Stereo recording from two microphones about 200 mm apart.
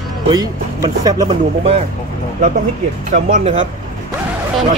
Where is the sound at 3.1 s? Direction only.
35° right (ahead or behind).